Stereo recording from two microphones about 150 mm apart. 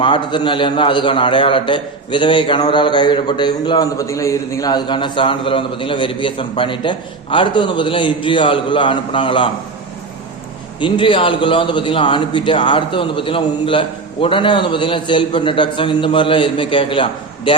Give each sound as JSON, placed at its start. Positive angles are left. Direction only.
{"t": 0.0, "sound": "a man's voice", "side_deg": 30}
{"t": 10.8, "sound": "a man's voice", "side_deg": 35}